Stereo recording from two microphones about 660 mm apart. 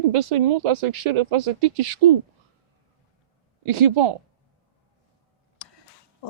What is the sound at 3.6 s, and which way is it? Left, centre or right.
Speech, right.